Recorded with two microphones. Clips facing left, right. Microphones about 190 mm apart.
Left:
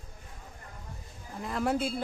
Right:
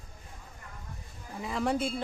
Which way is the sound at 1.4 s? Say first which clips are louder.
Even; centre (ahead or behind).